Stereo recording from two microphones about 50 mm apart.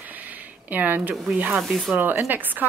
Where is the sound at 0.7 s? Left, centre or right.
Right.